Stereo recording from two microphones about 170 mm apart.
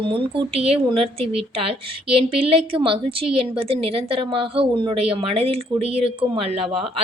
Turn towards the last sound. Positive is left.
turn(degrees=-35)  # may be behind; listen again after turning